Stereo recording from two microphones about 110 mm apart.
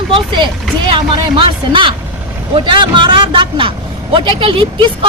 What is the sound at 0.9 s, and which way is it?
A woman's voice, 50° right (ahead or behind).